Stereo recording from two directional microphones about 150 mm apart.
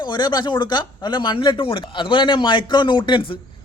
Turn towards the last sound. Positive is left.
turn(degrees=30)  # may be behind; listen again after turning